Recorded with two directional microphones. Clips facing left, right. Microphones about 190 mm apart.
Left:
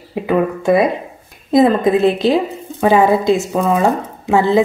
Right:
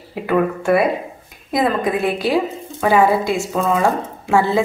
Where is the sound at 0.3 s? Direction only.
20° left (ahead or behind).